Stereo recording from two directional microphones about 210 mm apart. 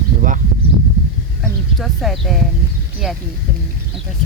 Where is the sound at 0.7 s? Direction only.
5° left (ahead or behind).